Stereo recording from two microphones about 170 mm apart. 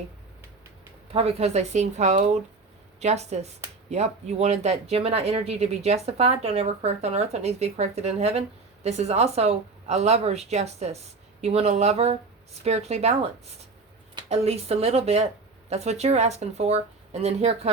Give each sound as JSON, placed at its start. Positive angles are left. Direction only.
{"t": 1.1, "sound": "speech", "side_deg": -40}
{"t": 14.3, "sound": "speech", "side_deg": -40}